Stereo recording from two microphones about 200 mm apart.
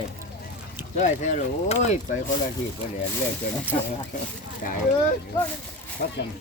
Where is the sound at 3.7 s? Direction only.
35° left (ahead or behind).